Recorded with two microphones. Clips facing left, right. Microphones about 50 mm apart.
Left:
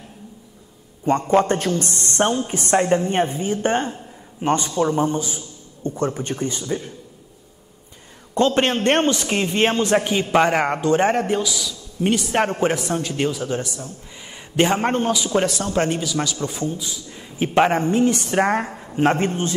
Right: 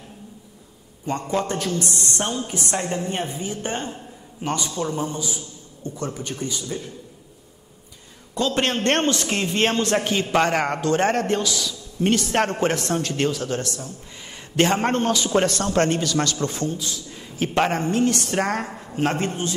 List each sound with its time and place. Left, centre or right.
1.0 s a woman's voice: left
8.4 s a woman's voice: left; by 17.5 s centre
17.6 s a woman's voice: left